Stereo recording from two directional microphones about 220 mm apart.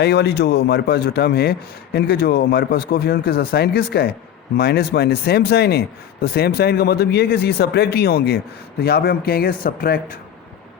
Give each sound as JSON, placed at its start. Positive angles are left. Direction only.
{"t": 0.0, "sound": "a man's voice", "side_deg": 50}